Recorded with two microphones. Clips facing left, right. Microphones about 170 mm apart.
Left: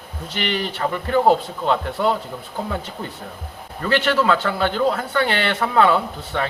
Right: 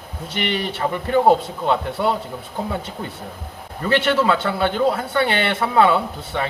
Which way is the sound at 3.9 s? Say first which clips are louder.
Even; 20° right (ahead or behind).